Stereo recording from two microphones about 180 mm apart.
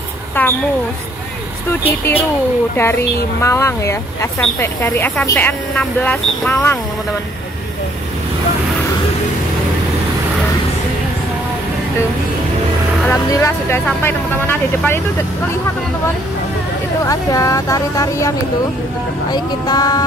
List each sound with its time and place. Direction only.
0.4 s a sound: 10° left (ahead or behind)
1.7 s speech: 10° left (ahead or behind)
13.0 s speech: 15° left (ahead or behind)
17.0 s speech: 20° left (ahead or behind)
19.3 s speech: 25° left (ahead or behind)